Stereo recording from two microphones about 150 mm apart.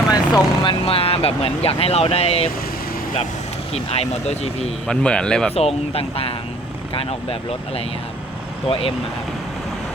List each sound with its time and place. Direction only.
0.1 s speech: 30° left (ahead or behind)
3.7 s speech: 45° left (ahead or behind)
4.9 s speech: 5° left (ahead or behind)
5.5 s speech: 40° left (ahead or behind)